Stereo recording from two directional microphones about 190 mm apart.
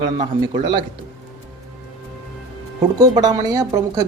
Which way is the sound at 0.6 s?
25° right (ahead or behind).